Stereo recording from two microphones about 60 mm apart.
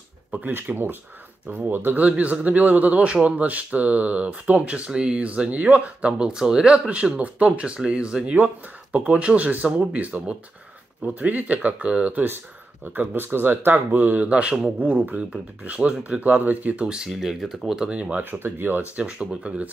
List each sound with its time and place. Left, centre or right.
0.5 s speech: right
2.0 s speech: right
16.8 s speech: centre
17.9 s speech: right
18.4 s speech: right
18.8 s speech: right